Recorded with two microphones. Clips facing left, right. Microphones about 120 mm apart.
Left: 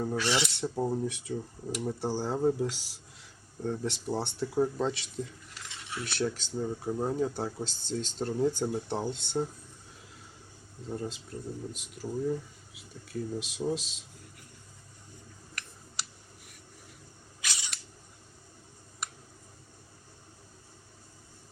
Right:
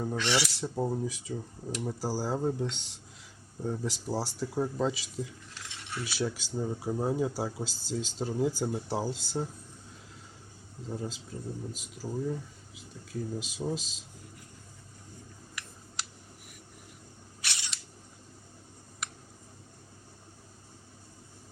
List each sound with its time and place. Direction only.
0.2 s speech: 15° left (ahead or behind)
0.4 s speech: centre (ahead or behind)
10.8 s speech: centre (ahead or behind)